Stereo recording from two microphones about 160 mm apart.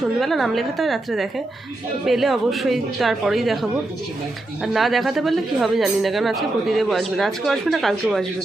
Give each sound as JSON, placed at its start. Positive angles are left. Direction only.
{"t": 0.2, "sound": "speech", "side_deg": 0}